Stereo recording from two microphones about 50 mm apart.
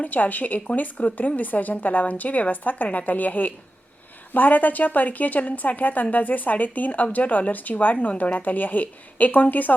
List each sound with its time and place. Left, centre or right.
0.0 s a woman's voice: left